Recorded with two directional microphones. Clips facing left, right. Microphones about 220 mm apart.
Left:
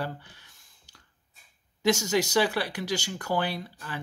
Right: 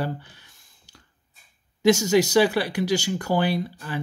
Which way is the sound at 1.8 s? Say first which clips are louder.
Right 7 dB; 5° right (ahead or behind).